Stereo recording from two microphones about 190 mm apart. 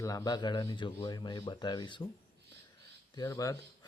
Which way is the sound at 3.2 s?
15° left (ahead or behind).